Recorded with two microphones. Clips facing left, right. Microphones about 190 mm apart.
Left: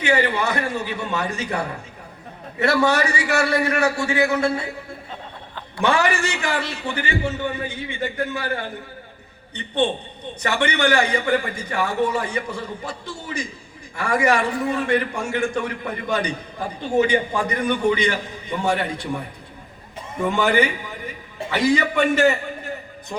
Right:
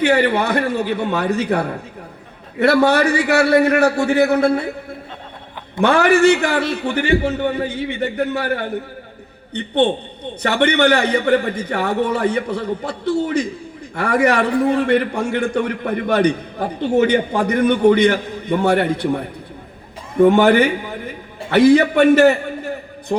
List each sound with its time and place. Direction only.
0.0 s a man's voice: 60° right (ahead or behind)
5.8 s a man's voice: 60° right (ahead or behind)
20.2 s a man's voice: 65° right (ahead or behind)